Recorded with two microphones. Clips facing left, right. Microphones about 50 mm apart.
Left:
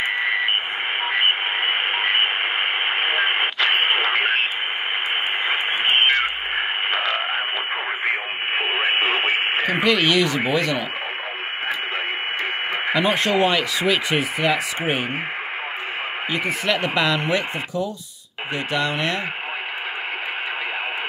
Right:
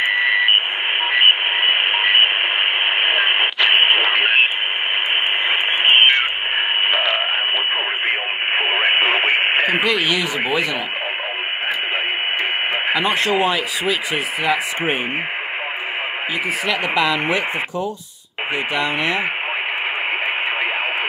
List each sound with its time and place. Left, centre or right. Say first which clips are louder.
1.2 s radio: right 7 dB; right
3.7 s radio: right 6 dB; right
5.5 s radio: right 5 dB; right
8.5 s radio: right 3 dB; right
9.1 s radio: right 4 dB; right
9.8 s speech: left 1 dB; centre
12.9 s speech: even; centre
16.6 s speech: right 2 dB; centre